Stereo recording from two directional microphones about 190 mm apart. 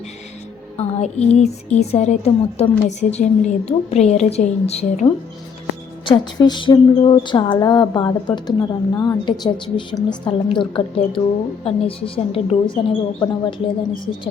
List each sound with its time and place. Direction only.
0.8 s a woman's voice: 35° left (ahead or behind)